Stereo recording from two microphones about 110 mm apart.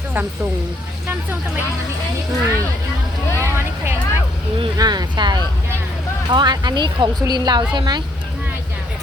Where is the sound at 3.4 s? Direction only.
20° right (ahead or behind).